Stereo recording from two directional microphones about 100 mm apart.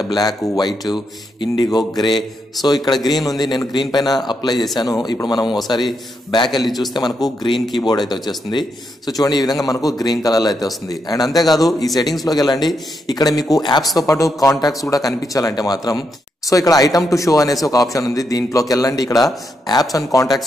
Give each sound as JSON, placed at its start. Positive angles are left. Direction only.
{"t": 0.0, "sound": "speech", "side_deg": 40}
{"t": 0.6, "sound": "mantra", "side_deg": 45}
{"t": 3.9, "sound": "speech", "side_deg": 40}
{"t": 4.3, "sound": "mantra", "side_deg": 45}
{"t": 4.7, "sound": "speech", "side_deg": 40}
{"t": 6.9, "sound": "mantra", "side_deg": 45}
{"t": 7.5, "sound": "a man's voice", "side_deg": 0}
{"t": 7.8, "sound": "speech", "side_deg": 45}
{"t": 13.9, "sound": "speech", "side_deg": 35}